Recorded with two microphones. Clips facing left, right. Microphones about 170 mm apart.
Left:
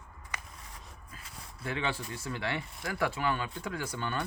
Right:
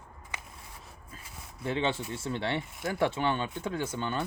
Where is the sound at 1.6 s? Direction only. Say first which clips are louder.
Right 4 dB; 25° right (ahead or behind).